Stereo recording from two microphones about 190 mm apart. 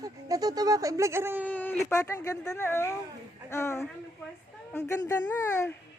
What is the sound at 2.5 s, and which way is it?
Speech, 15° left (ahead or behind).